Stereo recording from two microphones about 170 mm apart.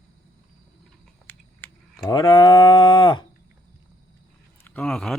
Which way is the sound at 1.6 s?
10° left (ahead or behind).